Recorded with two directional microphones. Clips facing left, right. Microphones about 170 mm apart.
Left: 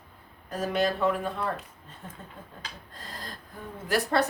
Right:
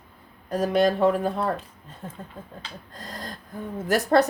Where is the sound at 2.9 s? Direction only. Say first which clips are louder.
Right 6 dB; 40° right (ahead or behind).